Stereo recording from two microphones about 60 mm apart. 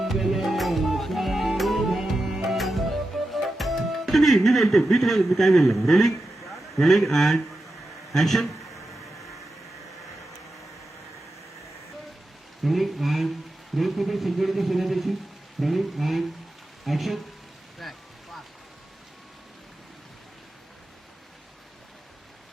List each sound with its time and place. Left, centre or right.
0.0 s music: centre
8.1 s a man's voice: centre
12.6 s a man's voice: centre
17.8 s a sound: centre